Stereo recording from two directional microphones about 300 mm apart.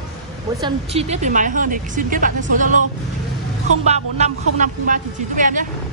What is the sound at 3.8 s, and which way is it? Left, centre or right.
Speech, right.